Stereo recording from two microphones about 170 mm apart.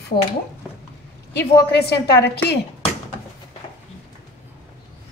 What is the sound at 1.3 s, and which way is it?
A woman's voice, 70° left (ahead or behind).